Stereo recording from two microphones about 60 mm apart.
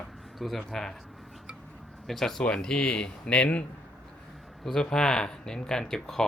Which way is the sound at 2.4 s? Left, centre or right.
Centre.